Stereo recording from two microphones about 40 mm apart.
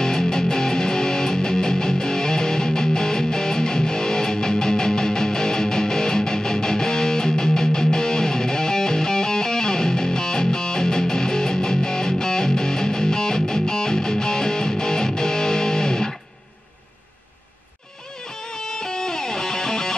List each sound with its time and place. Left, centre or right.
0.0 s music: centre
18.6 s music: centre